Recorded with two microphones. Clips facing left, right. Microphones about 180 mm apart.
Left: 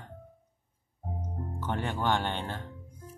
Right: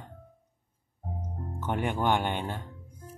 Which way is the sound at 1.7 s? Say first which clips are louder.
Right 3 dB; 15° right (ahead or behind).